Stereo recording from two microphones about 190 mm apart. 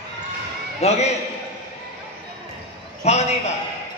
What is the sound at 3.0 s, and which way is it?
Speech, 35° left (ahead or behind).